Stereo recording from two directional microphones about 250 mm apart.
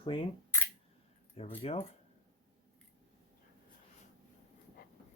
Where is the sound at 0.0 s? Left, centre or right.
Centre.